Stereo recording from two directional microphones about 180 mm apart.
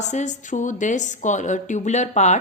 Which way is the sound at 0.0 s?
40° left (ahead or behind).